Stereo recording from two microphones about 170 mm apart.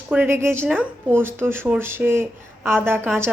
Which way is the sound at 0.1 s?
10° right (ahead or behind).